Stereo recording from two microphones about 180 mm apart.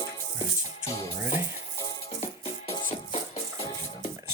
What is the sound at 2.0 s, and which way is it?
Music, 35° left (ahead or behind).